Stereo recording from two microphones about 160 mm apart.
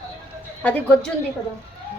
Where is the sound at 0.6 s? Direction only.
5° left (ahead or behind).